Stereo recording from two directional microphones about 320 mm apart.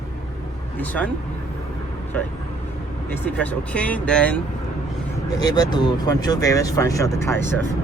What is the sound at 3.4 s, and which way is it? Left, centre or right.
Speech, centre.